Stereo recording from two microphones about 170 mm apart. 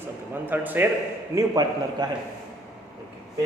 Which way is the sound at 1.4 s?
25° right (ahead or behind).